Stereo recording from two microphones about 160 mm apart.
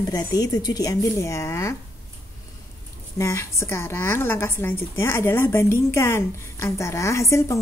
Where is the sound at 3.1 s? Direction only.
15° left (ahead or behind).